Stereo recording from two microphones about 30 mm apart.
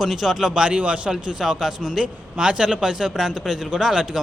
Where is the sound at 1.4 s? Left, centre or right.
Centre.